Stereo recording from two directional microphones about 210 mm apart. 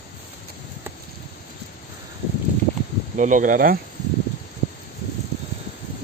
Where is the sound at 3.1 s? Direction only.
35° right (ahead or behind).